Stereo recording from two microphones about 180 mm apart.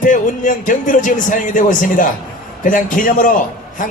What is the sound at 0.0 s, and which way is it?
Speech, 45° left (ahead or behind).